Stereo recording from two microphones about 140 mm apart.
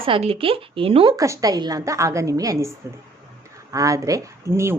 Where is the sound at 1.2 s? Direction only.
25° right (ahead or behind).